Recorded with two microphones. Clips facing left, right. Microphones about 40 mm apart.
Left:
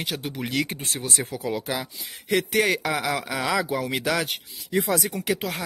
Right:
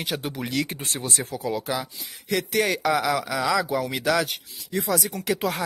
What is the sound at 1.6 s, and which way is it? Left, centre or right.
Speech, centre.